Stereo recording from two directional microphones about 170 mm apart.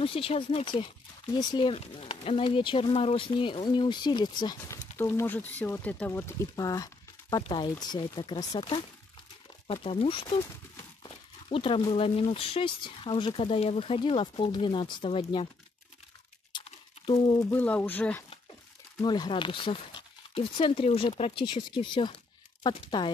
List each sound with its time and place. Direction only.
0.0 s speech: 35° left (ahead or behind)
4.9 s speech: 15° left (ahead or behind); by 15.4 s 30° left (ahead or behind)
16.5 s a sound: 35° left (ahead or behind)
17.5 s speech: 10° left (ahead or behind)
18.9 s speech: 25° left (ahead or behind)